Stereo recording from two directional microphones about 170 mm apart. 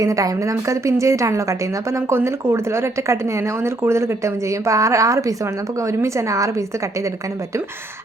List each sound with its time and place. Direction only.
0.0 s a woman's voice: 20° right (ahead or behind)